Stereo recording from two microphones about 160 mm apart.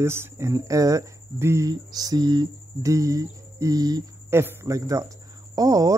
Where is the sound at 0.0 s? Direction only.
15° right (ahead or behind).